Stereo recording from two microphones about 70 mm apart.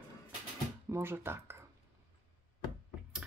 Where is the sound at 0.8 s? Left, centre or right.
Right.